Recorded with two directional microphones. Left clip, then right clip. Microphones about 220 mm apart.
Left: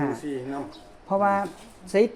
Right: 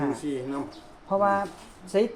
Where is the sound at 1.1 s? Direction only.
35° left (ahead or behind).